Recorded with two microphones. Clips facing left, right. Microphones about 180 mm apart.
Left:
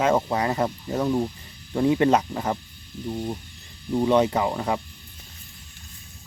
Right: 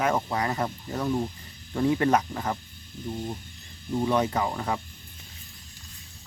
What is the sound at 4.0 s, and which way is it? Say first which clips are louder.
Speech: left 5 dB; 20° left (ahead or behind).